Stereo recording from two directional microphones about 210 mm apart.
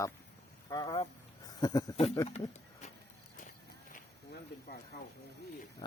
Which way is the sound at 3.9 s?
45° left (ahead or behind).